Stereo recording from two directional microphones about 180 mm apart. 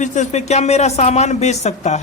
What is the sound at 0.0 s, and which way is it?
A woman's voice, 40° left (ahead or behind).